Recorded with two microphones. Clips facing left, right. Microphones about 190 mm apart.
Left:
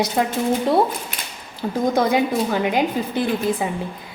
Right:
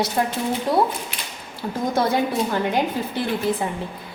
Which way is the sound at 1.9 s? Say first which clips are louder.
Left 1 dB; 15° left (ahead or behind).